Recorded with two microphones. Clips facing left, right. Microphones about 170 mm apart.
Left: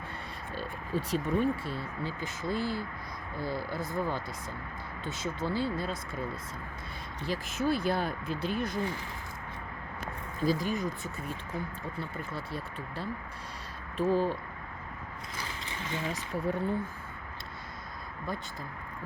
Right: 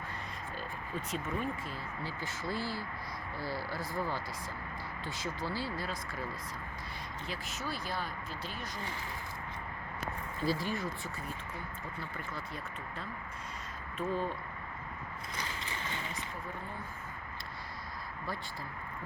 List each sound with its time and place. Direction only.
0.5 s speech: 30° left (ahead or behind)
7.3 s speech: 50° left (ahead or behind)
10.4 s speech: 15° left (ahead or behind)
12.1 s speech: 30° left (ahead or behind)
16.1 s speech: 80° left